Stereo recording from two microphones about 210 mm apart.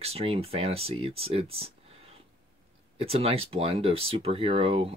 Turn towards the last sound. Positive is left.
turn(degrees=-25)  # may be behind; listen again after turning